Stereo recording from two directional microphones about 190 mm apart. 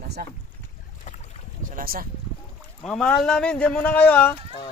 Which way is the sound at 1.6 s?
50° right (ahead or behind).